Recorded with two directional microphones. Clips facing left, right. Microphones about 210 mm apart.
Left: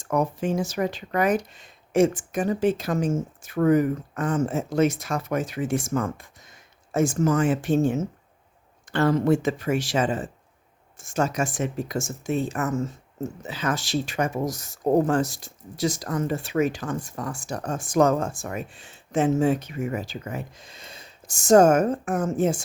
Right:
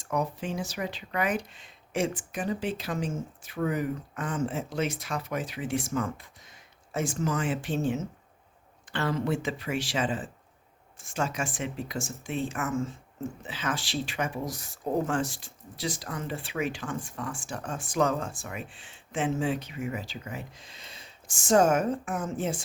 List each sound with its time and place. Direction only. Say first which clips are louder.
0.0 s speech: left 6 dB; 50° left (ahead or behind)